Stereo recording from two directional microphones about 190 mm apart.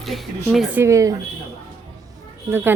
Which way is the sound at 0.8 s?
15° right (ahead or behind).